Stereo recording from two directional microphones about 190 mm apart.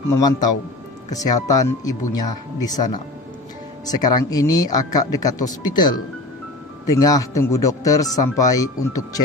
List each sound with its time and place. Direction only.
0.1 s speech: 20° left (ahead or behind)